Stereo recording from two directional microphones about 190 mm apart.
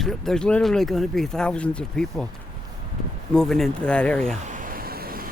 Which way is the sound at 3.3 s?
Centre (ahead or behind).